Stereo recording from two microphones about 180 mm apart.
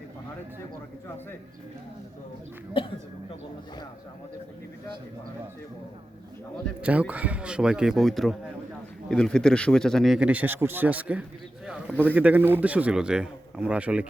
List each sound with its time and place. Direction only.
2.8 s speech: 30° left (ahead or behind)
6.8 s a man's voice: 10° right (ahead or behind)